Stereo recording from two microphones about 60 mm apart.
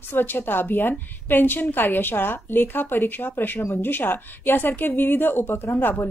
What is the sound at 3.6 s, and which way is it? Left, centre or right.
Speech, left.